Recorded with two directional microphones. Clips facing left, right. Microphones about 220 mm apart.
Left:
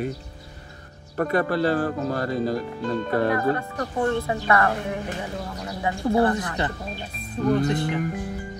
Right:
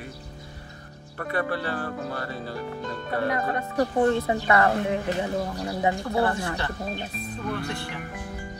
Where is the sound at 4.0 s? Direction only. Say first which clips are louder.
Even; 20° right (ahead or behind).